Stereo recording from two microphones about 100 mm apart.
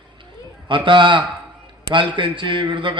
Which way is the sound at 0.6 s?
55° right (ahead or behind).